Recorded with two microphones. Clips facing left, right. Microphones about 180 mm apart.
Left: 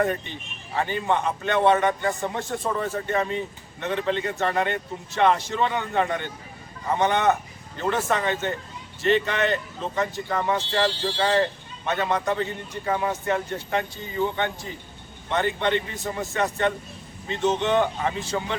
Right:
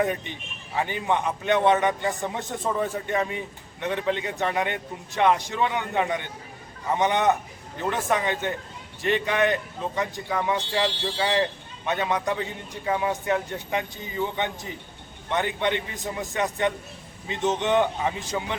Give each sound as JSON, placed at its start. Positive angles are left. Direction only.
{"t": 0.8, "sound": "a man's voice", "side_deg": -15}